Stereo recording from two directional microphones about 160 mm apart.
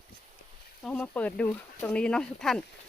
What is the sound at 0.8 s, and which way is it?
Speech, 10° left (ahead or behind).